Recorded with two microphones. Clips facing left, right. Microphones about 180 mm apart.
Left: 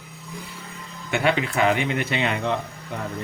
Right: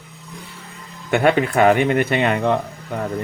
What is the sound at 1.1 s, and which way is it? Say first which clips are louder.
A man's voice: right 6 dB; 50° right (ahead or behind).